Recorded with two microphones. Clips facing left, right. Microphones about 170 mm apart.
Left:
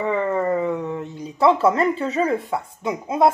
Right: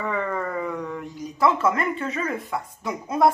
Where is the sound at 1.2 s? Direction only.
30° left (ahead or behind).